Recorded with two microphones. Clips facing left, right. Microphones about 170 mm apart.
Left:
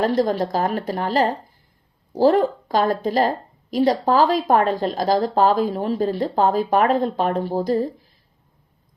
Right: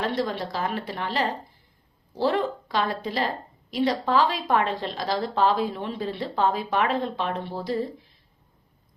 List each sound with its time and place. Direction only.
0.3 s a woman's voice: 45° left (ahead or behind)